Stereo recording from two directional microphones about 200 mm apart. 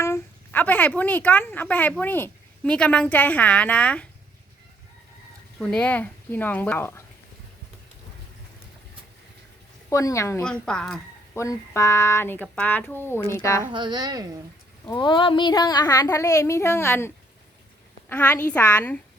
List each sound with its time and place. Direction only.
0.0 s speech: 10° left (ahead or behind)
5.5 s speech: 5° left (ahead or behind)
9.9 s speech: 15° left (ahead or behind)
10.4 s a woman's voice: 5° left (ahead or behind)
11.3 s speech: 15° left (ahead or behind)
13.7 s a woman's voice: 25° right (ahead or behind)
14.8 s speech: 25° left (ahead or behind)
18.1 s speech: 10° left (ahead or behind)